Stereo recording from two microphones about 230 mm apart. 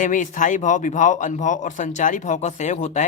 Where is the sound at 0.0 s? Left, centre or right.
Left.